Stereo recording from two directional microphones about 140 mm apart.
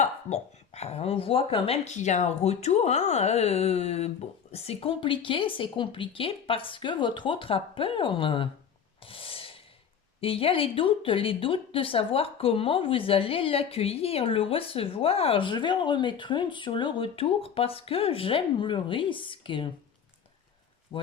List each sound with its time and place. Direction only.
0.0 s speech: 50° left (ahead or behind)
9.0 s snort: 40° left (ahead or behind)
10.2 s speech: 40° left (ahead or behind)
20.9 s speech: 40° left (ahead or behind)